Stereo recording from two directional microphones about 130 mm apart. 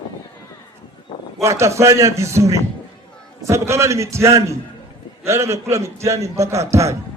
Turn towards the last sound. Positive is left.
turn(degrees=-20)  # may be behind; listen again after turning